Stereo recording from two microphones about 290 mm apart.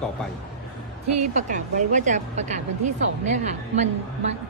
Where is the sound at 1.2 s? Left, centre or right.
Right.